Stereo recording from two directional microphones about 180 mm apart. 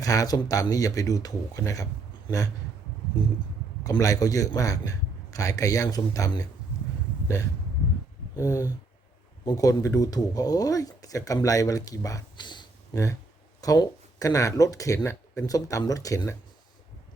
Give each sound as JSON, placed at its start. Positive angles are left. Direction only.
{"t": 0.0, "sound": "speech", "side_deg": 20}
{"t": 3.8, "sound": "speech", "side_deg": 20}
{"t": 8.4, "sound": "speech", "side_deg": 15}